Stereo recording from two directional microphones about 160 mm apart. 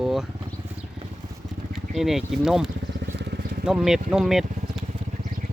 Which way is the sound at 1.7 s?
Centre (ahead or behind).